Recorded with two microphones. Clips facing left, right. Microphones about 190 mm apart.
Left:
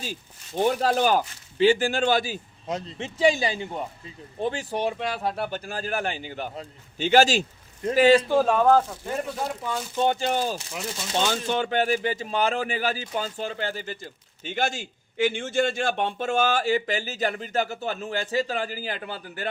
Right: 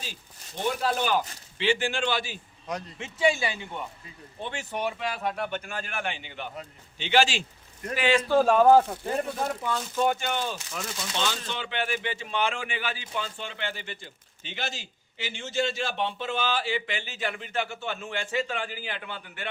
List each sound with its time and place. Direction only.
0.0 s speech: 45° left (ahead or behind)
2.6 s a man's voice: 25° left (ahead or behind)
3.2 s speech: 35° left (ahead or behind)
8.4 s speech: centre (ahead or behind)
9.9 s speech: 25° left (ahead or behind)